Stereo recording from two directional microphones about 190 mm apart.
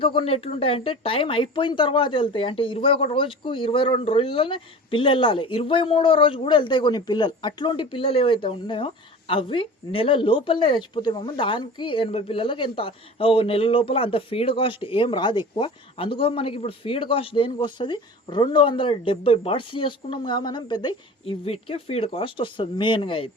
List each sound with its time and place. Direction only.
0.0 s speech: 25° left (ahead or behind)